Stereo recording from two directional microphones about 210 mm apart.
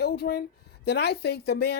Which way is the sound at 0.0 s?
50° left (ahead or behind).